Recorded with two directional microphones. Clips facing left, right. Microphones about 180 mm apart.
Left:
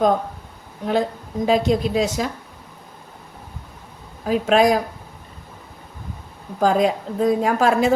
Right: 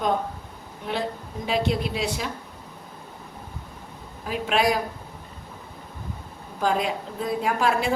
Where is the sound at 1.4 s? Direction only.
40° left (ahead or behind).